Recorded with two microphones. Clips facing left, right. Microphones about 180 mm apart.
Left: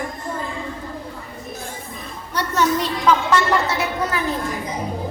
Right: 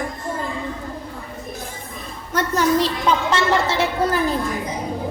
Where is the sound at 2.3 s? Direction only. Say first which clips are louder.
Right 2 dB; 45° right (ahead or behind).